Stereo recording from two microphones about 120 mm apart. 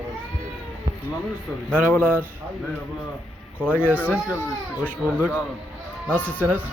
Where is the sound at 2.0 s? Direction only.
15° right (ahead or behind).